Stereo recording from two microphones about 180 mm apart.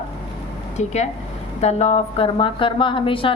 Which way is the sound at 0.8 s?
40° left (ahead or behind).